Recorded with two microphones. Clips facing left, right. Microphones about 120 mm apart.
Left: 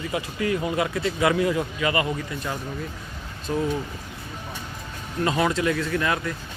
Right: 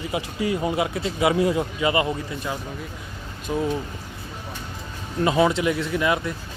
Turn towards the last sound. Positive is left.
turn(degrees=-20)  # may be behind; listen again after turning